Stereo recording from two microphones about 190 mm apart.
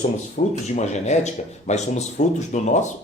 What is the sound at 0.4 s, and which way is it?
A man's voice, 45° left (ahead or behind).